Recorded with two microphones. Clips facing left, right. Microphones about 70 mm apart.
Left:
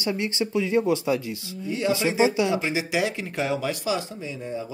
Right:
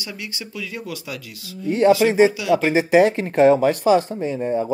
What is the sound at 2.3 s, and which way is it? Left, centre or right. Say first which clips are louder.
Speech: right 4 dB; left.